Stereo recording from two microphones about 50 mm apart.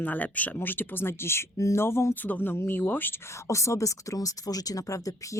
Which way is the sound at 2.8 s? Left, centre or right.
Left.